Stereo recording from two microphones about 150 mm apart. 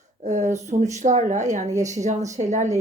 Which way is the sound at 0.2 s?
55° right (ahead or behind).